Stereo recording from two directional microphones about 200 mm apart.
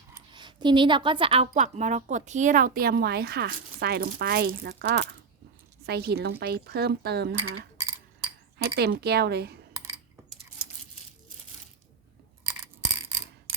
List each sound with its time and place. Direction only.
0.1 s a woman's voice: 25° right (ahead or behind); by 7.3 s 55° right (ahead or behind)
8.5 s a woman's voice: 55° right (ahead or behind)